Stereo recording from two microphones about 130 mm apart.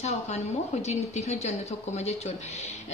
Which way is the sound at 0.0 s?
60° left (ahead or behind).